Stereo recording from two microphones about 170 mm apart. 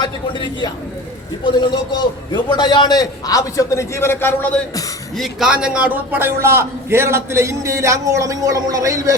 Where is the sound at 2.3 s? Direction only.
25° left (ahead or behind).